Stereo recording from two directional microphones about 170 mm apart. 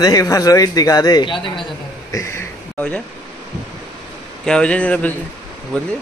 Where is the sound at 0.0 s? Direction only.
20° left (ahead or behind).